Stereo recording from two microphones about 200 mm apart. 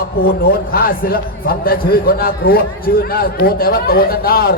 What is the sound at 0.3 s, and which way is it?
A man's voice, 50° left (ahead or behind).